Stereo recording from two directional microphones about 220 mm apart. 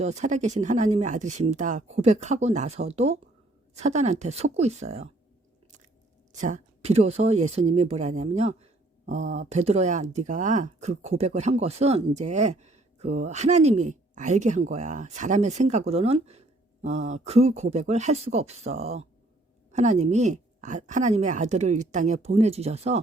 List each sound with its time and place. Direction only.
0.0 s speech: 30° right (ahead or behind)
6.3 s speech: 35° right (ahead or behind)